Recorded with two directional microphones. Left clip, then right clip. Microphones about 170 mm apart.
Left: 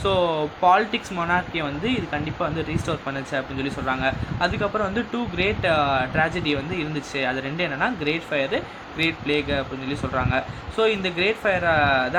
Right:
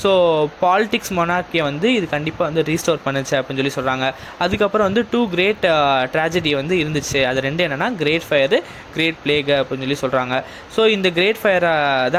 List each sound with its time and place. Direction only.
0.0 s speech: 45° right (ahead or behind)